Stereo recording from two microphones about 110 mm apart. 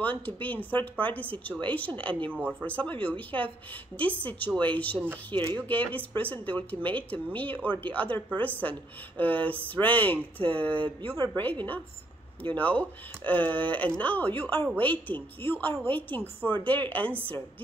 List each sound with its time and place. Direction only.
0.0 s speech: 15° left (ahead or behind)
12.4 s speech: 10° left (ahead or behind)